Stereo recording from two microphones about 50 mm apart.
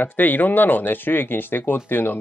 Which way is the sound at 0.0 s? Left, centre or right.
Left.